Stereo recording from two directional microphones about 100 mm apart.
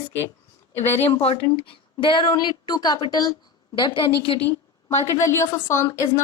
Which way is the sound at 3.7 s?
60° left (ahead or behind).